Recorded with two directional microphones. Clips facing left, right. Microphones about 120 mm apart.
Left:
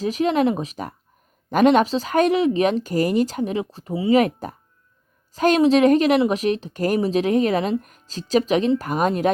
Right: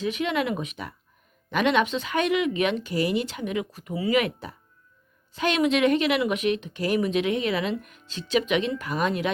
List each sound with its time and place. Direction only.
0.0 s a woman's voice: 35° left (ahead or behind)
4.2 s a woman's voice: 45° left (ahead or behind)